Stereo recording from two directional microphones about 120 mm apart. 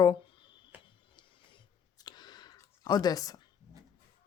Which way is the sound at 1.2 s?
35° left (ahead or behind).